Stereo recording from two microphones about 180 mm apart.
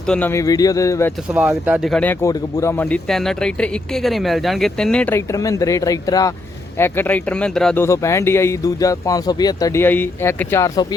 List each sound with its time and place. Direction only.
0.0 s speech: 5° left (ahead or behind)
1.3 s speech: 10° right (ahead or behind)
7.9 s speech: 15° left (ahead or behind)